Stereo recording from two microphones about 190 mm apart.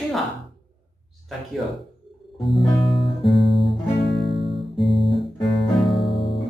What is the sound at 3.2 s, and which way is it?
Guitar, centre (ahead or behind).